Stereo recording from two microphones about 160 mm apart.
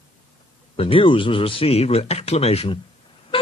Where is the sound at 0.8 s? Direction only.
35° left (ahead or behind).